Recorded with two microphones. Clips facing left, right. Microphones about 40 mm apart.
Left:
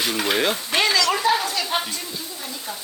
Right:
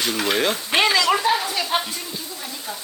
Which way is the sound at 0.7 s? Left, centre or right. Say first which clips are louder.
Right 4 dB; right.